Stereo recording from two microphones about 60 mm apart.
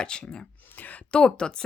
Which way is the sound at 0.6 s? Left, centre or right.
Left.